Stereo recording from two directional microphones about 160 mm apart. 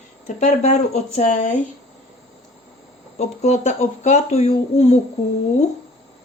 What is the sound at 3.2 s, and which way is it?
Speech, 45° left (ahead or behind).